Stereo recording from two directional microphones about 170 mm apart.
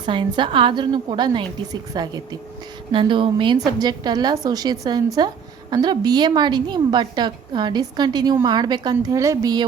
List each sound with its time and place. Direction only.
0.0 s a woman's voice: 30° right (ahead or behind)